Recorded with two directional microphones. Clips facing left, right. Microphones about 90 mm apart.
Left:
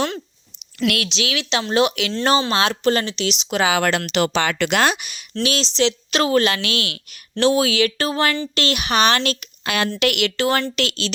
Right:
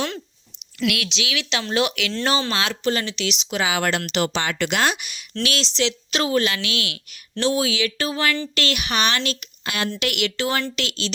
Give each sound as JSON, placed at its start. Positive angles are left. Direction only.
{"t": 0.8, "sound": "speech", "side_deg": 40}
{"t": 2.8, "sound": "speech", "side_deg": 40}
{"t": 3.5, "sound": "a woman's voice", "side_deg": 50}
{"t": 3.8, "sound": "speech", "side_deg": 75}
{"t": 4.7, "sound": "speech", "side_deg": 45}
{"t": 6.1, "sound": "speech", "side_deg": 65}
{"t": 6.4, "sound": "speech", "side_deg": 50}
{"t": 7.3, "sound": "a woman's voice", "side_deg": 60}
{"t": 8.4, "sound": "speech", "side_deg": 25}
{"t": 9.1, "sound": "a woman's voice", "side_deg": 50}